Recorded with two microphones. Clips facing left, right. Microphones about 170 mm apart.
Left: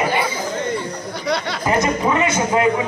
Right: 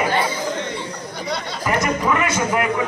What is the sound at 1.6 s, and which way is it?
A man's voice, 20° left (ahead or behind).